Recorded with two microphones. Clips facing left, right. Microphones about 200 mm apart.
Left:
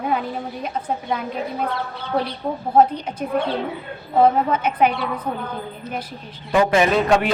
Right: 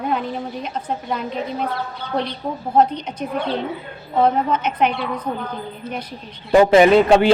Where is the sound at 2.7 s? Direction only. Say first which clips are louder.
Left 1 dB; 10° left (ahead or behind).